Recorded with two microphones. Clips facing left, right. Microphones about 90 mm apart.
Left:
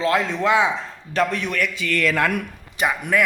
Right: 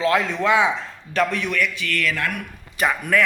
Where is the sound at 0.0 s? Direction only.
30° left (ahead or behind).